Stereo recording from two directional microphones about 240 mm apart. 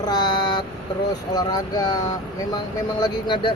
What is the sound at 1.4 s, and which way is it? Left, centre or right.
Speech, centre.